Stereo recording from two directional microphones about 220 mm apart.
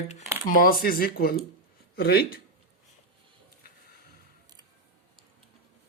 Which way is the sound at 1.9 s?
45° left (ahead or behind).